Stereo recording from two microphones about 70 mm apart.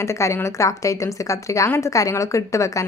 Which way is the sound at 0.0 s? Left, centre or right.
Left.